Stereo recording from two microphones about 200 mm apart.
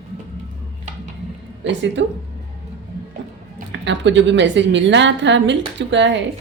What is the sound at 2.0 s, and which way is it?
Speech, 65° right (ahead or behind).